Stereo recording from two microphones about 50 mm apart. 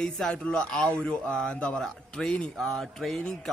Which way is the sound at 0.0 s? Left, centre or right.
Centre.